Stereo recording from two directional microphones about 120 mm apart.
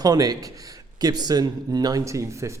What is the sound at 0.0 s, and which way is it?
Speech, 30° right (ahead or behind).